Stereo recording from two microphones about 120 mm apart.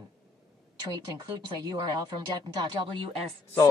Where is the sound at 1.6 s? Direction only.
35° right (ahead or behind).